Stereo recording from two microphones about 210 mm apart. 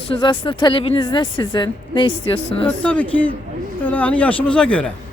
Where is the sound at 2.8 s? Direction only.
5° left (ahead or behind).